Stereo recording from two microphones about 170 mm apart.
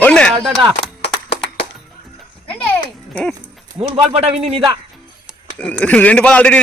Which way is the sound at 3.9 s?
35° right (ahead or behind).